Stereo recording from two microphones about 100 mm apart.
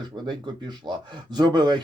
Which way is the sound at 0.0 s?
50° right (ahead or behind).